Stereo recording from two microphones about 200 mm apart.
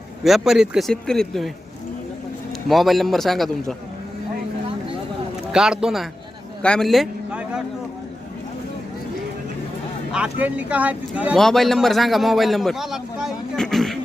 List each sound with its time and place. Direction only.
0.3 s speech: centre (ahead or behind)
2.6 s speech: centre (ahead or behind)
5.5 s a man's voice: 5° right (ahead or behind)
10.1 s speech: 5° right (ahead or behind)